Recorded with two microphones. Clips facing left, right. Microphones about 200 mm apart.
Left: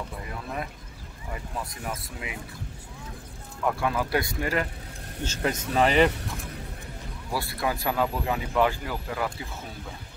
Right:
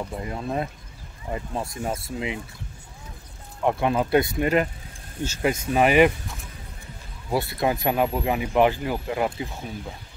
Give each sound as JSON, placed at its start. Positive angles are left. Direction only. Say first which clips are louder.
{"t": 0.2, "sound": "speech", "louder": "right 8 dB", "side_deg": -30}
{"t": 3.6, "sound": "speech", "louder": "right 4 dB", "side_deg": -25}
{"t": 5.2, "sound": "speech", "louder": "right 4 dB", "side_deg": -10}
{"t": 7.3, "sound": "speech", "louder": "right 6 dB", "side_deg": -20}